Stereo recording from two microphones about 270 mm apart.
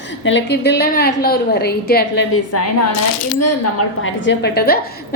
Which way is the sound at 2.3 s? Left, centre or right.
Left.